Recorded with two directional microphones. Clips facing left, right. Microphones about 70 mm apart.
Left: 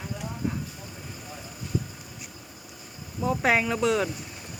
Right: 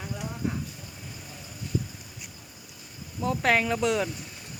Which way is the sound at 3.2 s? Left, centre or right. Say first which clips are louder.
Left 1 dB; centre.